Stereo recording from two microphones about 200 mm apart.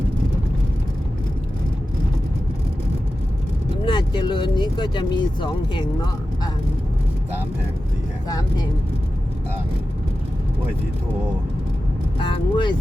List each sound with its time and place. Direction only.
3.8 s speech: 25° left (ahead or behind)
8.3 s speech: 20° left (ahead or behind)
12.2 s speech: 25° left (ahead or behind)